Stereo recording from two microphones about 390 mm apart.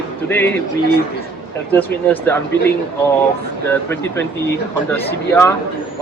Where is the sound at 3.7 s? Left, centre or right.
Centre.